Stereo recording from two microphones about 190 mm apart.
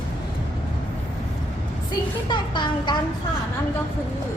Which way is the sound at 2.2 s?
25° left (ahead or behind).